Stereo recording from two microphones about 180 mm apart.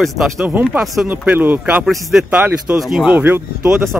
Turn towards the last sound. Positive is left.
turn(degrees=-5)  # may be behind; listen again after turning